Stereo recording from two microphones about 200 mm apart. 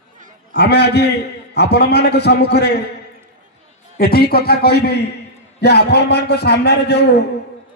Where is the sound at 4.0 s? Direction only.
50° left (ahead or behind).